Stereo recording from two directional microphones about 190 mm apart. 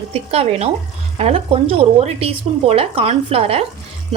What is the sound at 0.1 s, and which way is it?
A woman's voice, 30° right (ahead or behind).